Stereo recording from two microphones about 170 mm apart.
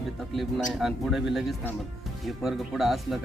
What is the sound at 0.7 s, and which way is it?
Speech, centre (ahead or behind).